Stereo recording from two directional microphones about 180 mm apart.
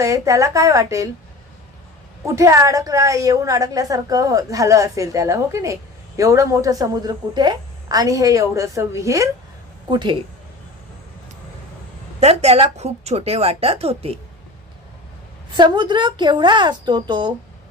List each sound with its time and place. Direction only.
0.0 s a woman's voice: 15° right (ahead or behind)
2.2 s a woman's voice: 15° right (ahead or behind)
12.2 s a woman's voice: 35° right (ahead or behind)
15.5 s a woman's voice: 25° right (ahead or behind)